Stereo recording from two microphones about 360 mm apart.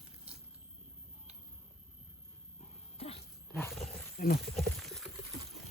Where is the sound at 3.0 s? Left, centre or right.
Centre.